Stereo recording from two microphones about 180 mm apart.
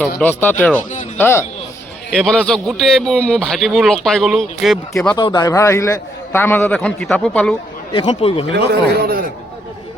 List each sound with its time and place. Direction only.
0.2 s a man's voice: 10° left (ahead or behind)
2.0 s a man's voice: 5° left (ahead or behind)
5.1 s a man's voice: 25° left (ahead or behind); by 7.5 s 5° left (ahead or behind)
7.9 s speech: 25° left (ahead or behind)
8.5 s speech: 60° right (ahead or behind)